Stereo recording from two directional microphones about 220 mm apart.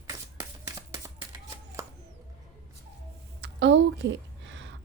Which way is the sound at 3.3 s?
55° right (ahead or behind).